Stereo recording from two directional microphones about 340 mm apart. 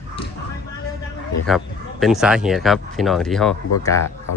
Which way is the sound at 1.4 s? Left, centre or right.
Centre.